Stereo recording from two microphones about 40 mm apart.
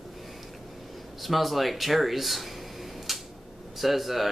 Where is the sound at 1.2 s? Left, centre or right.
Centre.